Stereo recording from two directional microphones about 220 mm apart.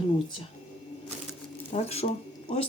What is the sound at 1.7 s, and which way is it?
Speech, 30° left (ahead or behind).